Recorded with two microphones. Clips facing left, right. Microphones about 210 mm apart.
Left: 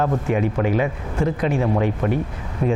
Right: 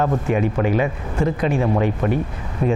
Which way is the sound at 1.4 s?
25° right (ahead or behind).